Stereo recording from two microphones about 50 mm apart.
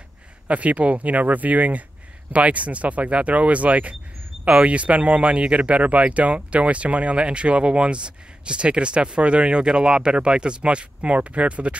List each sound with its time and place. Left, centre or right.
0.5 s speech: right